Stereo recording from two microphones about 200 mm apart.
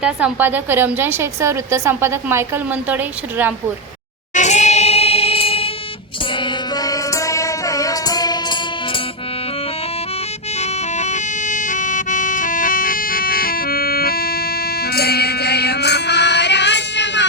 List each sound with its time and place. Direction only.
0.0 s a woman's voice: 5° right (ahead or behind)
4.4 s music: 35° left (ahead or behind); by 8.5 s 20° left (ahead or behind)
10.6 s bagpipes: 35° left (ahead or behind); by 17.2 s 60° left (ahead or behind)